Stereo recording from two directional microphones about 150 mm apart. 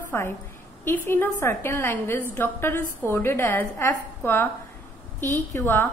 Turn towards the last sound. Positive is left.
turn(degrees=15)  # may be behind; listen again after turning